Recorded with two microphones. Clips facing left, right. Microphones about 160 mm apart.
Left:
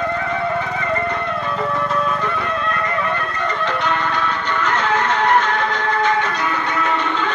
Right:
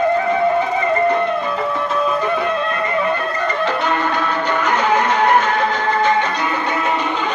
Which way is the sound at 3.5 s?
5° right (ahead or behind).